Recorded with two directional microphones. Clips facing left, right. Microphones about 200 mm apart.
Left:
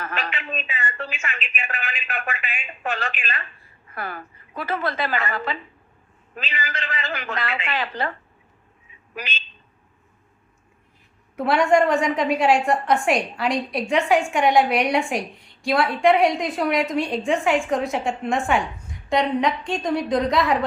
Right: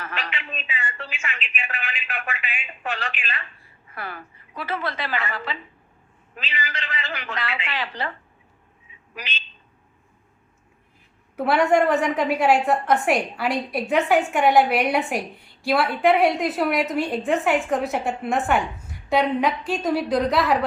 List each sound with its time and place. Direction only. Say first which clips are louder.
0.0 s speech: left 3 dB; 45° left (ahead or behind)
9.1 s speech: left 3 dB; 50° left (ahead or behind)
11.3 s a woman's voice: left 1 dB; 5° right (ahead or behind)